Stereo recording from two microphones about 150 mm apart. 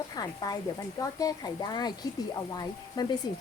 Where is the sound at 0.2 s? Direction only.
25° left (ahead or behind).